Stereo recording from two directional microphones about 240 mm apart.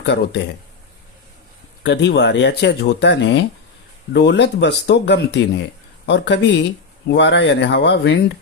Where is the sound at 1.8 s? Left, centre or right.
Left.